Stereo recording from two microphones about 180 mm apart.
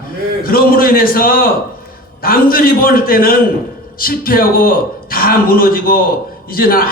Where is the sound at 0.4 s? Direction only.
55° left (ahead or behind).